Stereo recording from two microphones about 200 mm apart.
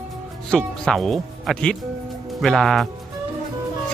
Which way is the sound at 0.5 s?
5° left (ahead or behind).